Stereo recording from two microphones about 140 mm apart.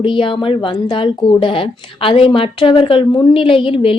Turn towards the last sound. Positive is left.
turn(degrees=40)  # may be behind; listen again after turning